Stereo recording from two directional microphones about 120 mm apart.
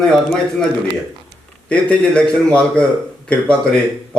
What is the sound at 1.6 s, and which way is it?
A man's voice, 10° left (ahead or behind).